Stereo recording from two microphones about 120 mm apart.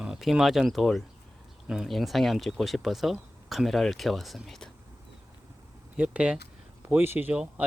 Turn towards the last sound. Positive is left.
turn(degrees=-10)  # may be behind; listen again after turning